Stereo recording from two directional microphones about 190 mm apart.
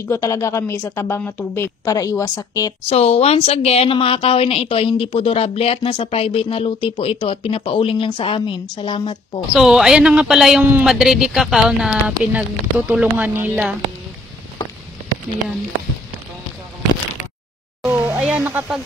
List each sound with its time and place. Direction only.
0.0 s a woman's voice: 15° left (ahead or behind)
2.9 s a woman's voice: 30° left (ahead or behind)
9.5 s a woman's voice: centre (ahead or behind)
17.8 s a sound: 10° right (ahead or behind)